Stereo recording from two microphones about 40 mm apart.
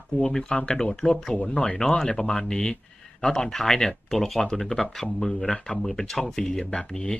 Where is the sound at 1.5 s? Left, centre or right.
Left.